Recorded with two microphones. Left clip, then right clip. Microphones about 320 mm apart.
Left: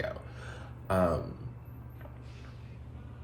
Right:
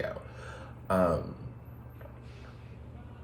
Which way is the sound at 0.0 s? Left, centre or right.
Centre.